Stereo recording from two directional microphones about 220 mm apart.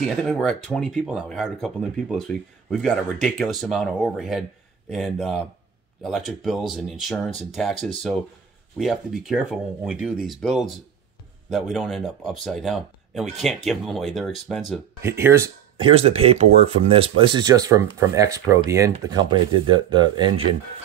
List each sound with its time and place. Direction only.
0.0 s speech: centre (ahead or behind)
15.0 s speech: 10° right (ahead or behind)
15.8 s speech: 25° right (ahead or behind)